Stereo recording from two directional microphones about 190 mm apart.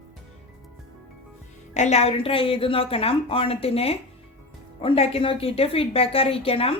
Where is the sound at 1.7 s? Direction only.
35° left (ahead or behind).